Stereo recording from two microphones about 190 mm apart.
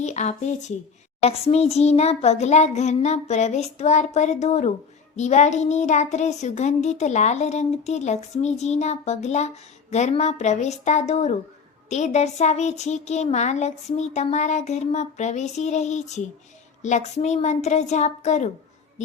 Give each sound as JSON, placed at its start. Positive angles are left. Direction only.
{"t": 0.0, "sound": "a woman's voice", "side_deg": 35}